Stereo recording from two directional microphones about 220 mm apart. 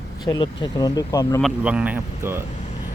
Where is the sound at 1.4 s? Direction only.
5° right (ahead or behind).